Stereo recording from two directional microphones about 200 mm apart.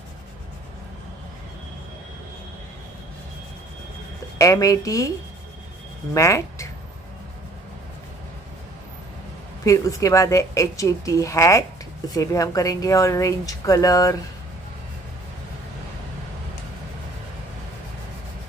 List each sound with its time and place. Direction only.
4.4 s speech: 15° left (ahead or behind)
6.1 s speech: 15° left (ahead or behind)
9.7 s speech: 15° left (ahead or behind)